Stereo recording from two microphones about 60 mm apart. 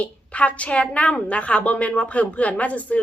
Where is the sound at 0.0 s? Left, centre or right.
Left.